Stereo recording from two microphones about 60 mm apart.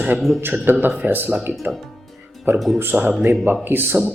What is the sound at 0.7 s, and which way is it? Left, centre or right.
Speech, right.